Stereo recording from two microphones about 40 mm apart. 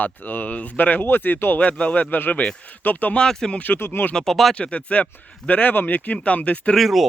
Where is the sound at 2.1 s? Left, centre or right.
Left.